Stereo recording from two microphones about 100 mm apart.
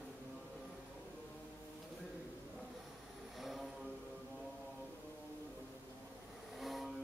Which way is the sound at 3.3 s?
Centre (ahead or behind).